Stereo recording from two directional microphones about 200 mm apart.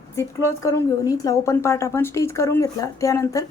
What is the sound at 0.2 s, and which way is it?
A woman's voice, 15° left (ahead or behind).